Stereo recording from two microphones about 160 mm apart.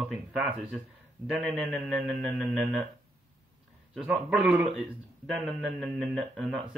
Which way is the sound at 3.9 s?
5° right (ahead or behind).